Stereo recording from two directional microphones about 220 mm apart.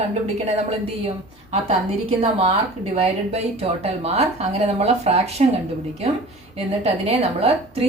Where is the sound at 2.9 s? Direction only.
30° right (ahead or behind).